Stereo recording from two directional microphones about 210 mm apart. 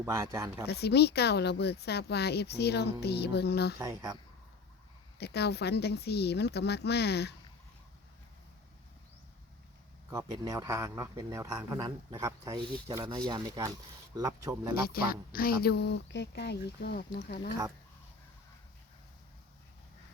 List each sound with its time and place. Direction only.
0.0 s speech: 15° right (ahead or behind)
0.7 s speech: 50° left (ahead or behind)
3.8 s speech: 20° right (ahead or behind)
5.1 s speech: 50° left (ahead or behind)
10.1 s speech: 15° right (ahead or behind)
14.8 s speech: 45° left (ahead or behind)